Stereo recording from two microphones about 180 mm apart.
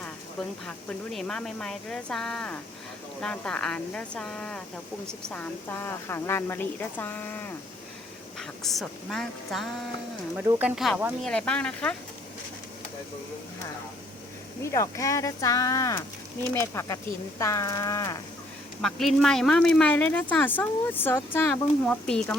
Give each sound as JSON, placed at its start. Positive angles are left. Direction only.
{"t": 1.1, "sound": "a woman's voice", "side_deg": 5}
{"t": 14.6, "sound": "a woman's voice", "side_deg": 15}
{"t": 18.8, "sound": "speech", "side_deg": 0}